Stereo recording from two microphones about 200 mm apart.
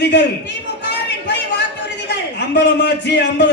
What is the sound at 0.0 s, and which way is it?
Speech, 60° left (ahead or behind).